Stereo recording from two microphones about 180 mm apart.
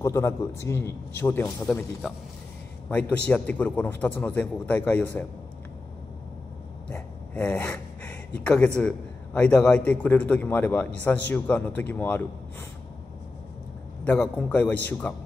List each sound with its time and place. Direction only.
0.0 s a man's voice: 15° left (ahead or behind)
2.9 s a man's voice: 10° left (ahead or behind)
6.9 s a man's voice: 5° left (ahead or behind)
14.0 s a man's voice: 10° left (ahead or behind)